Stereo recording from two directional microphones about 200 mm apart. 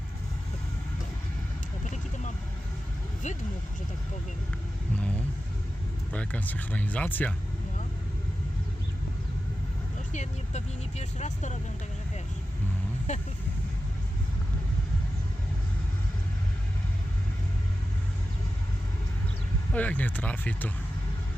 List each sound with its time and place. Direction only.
1.8 s vehicle: 35° left (ahead or behind)
3.2 s speech: 35° left (ahead or behind)
4.9 s speech: 5° left (ahead or behind)
10.1 s speech: 35° left (ahead or behind)
19.7 s speech: 10° left (ahead or behind)